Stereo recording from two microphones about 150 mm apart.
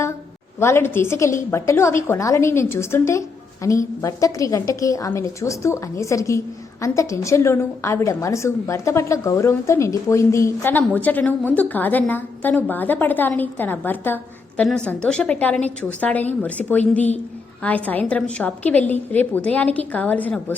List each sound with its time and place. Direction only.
0.6 s a woman's voice: 15° left (ahead or behind)